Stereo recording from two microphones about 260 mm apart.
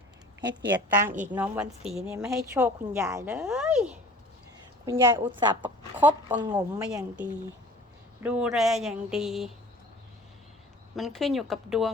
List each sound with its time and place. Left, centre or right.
0.7 s a woman's voice: centre
4.9 s a woman's voice: centre
6.0 s a woman's voice: centre
10.9 s a woman's voice: centre